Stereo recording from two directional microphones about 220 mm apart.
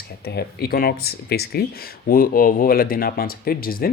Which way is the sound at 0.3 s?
45° left (ahead or behind).